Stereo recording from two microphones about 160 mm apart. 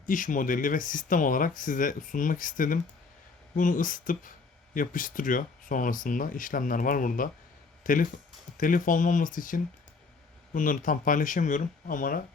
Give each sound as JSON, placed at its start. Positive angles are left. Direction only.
{"t": 0.0, "sound": "speech", "side_deg": 55}